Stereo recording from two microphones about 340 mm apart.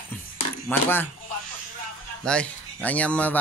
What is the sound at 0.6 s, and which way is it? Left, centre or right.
Speech, centre.